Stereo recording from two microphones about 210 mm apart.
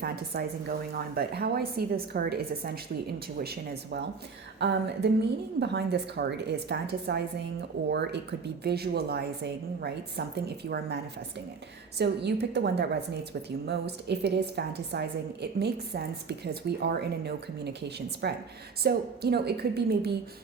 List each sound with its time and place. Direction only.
0.0 s a woman's voice: 45° right (ahead or behind)
3.3 s a woman's voice: 50° right (ahead or behind)